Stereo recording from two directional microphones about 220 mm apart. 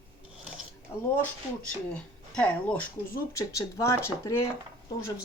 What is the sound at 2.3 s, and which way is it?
Speech, 5° left (ahead or behind).